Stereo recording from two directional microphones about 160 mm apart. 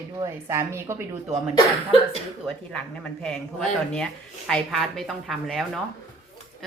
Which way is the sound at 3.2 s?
5° left (ahead or behind).